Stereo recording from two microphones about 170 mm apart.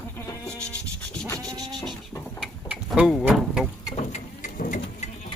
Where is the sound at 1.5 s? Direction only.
20° right (ahead or behind).